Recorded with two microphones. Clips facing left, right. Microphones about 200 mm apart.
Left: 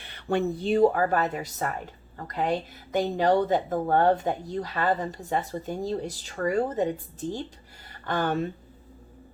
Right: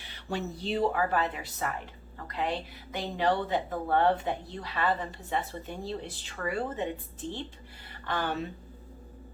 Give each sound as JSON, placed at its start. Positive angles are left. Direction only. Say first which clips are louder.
{"t": 0.0, "sound": "a woman's voice", "louder": "left 8 dB", "side_deg": 55}